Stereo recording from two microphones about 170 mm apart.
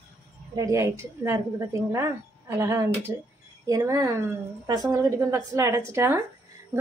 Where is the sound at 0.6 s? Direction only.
20° right (ahead or behind).